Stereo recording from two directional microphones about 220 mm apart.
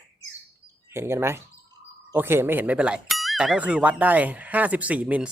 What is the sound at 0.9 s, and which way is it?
Speech, 10° right (ahead or behind).